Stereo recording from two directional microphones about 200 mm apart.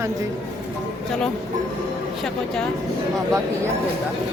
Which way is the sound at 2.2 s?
Centre (ahead or behind).